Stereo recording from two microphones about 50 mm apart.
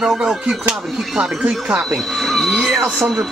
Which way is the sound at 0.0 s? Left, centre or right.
Centre.